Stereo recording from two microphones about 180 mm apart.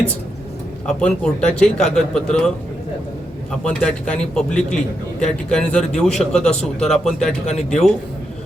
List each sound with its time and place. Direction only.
0.9 s a man's voice: 5° left (ahead or behind)
3.6 s a man's voice: 5° left (ahead or behind)
7.4 s speech: 40° left (ahead or behind)